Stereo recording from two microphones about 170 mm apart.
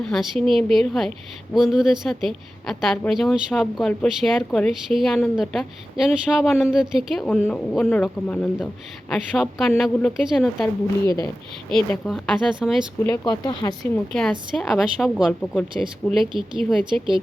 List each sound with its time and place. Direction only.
0.0 s speech: centre (ahead or behind)
10.6 s speech: 20° left (ahead or behind)
11.7 s speech: centre (ahead or behind)
13.1 s speech: 25° left (ahead or behind)
13.9 s speech: 5° left (ahead or behind)